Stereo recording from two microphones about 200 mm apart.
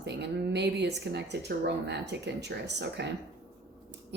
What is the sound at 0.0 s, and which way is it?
Speech, 60° right (ahead or behind).